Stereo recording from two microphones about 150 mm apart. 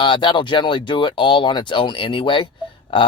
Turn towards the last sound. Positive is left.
turn(degrees=35)  # may be behind; listen again after turning